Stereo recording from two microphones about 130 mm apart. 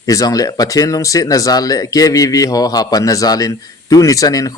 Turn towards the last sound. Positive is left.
turn(degrees=30)  # may be behind; listen again after turning